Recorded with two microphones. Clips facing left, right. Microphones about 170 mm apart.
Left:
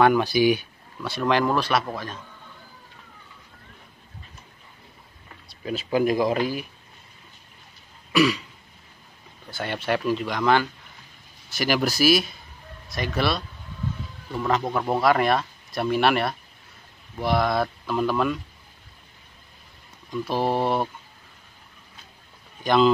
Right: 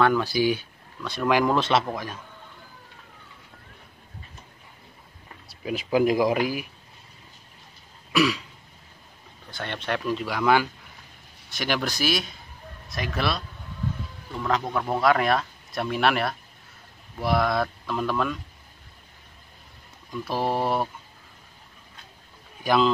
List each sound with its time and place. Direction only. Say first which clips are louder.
0.0 s speech: left 3 dB; 15° left (ahead or behind)
1.1 s speech: even; 10° right (ahead or behind)
1.9 s speech: right 1 dB; 10° right (ahead or behind)
5.5 s speech: right 1 dB; 10° right (ahead or behind)
8.1 s throat clearing: left 2 dB; centre (ahead or behind)
9.5 s speech: left 4 dB; 5° left (ahead or behind)
11.5 s speech: left 4 dB; 5° left (ahead or behind)
14.4 s speech: left 2 dB; 10° left (ahead or behind)
20.1 s speech: left 2 dB; centre (ahead or behind)
22.6 s speech: left 2 dB; 5° right (ahead or behind)